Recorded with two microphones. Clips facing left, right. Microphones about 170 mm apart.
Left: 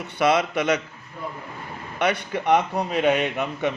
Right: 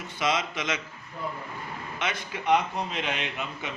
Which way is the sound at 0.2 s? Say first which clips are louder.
Left 8 dB; 60° left (ahead or behind).